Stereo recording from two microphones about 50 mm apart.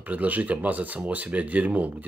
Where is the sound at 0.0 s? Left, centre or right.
Right.